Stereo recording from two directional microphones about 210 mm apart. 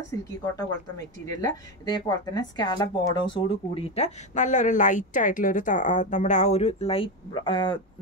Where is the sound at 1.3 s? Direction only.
20° left (ahead or behind).